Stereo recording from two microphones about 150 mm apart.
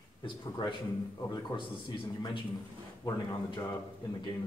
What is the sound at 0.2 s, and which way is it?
Speech, 30° left (ahead or behind).